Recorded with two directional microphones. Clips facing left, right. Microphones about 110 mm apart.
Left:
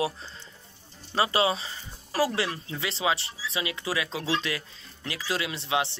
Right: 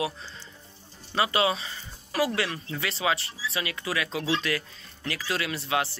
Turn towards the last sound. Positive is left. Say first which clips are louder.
# even
turn(degrees=25)  # may be behind; listen again after turning